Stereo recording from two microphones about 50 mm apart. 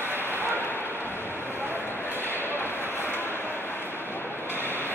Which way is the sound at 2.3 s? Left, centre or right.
Left.